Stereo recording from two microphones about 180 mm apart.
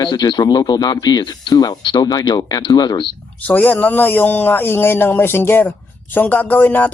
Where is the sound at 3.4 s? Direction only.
10° left (ahead or behind).